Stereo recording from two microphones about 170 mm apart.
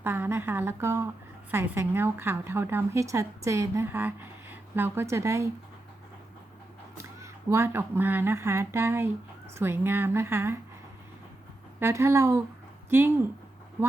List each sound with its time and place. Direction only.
0.0 s a woman's voice: 15° right (ahead or behind)
6.9 s a woman's voice: 15° right (ahead or behind)
11.8 s a woman's voice: 15° right (ahead or behind)